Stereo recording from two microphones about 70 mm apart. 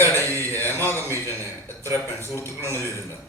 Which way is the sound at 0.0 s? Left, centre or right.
Right.